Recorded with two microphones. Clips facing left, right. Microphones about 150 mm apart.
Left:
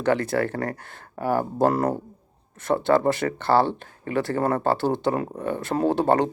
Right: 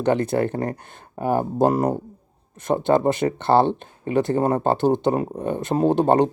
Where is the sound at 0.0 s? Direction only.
20° right (ahead or behind).